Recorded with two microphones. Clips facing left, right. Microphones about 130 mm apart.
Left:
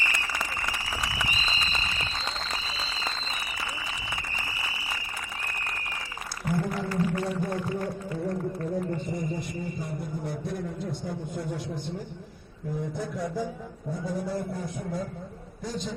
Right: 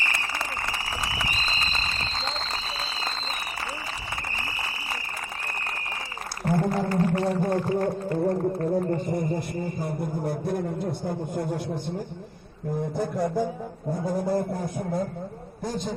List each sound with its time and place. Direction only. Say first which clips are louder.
0.1 s a sound: right 2 dB; 35° right (ahead or behind)
6.4 s whale vocalization: right 5 dB; 45° right (ahead or behind)
7.8 s music: right 7 dB; 55° right (ahead or behind)